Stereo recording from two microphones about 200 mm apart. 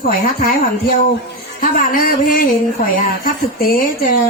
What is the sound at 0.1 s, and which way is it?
A woman's voice, 45° left (ahead or behind).